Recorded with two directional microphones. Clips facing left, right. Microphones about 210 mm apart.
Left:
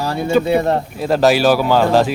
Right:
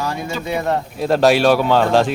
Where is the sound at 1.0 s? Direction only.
Centre (ahead or behind).